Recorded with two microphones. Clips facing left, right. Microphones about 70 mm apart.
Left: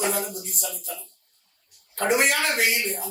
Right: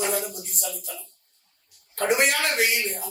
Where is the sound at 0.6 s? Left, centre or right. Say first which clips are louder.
Right 2 dB; left.